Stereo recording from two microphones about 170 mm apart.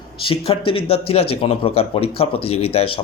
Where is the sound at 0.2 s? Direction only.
30° left (ahead or behind).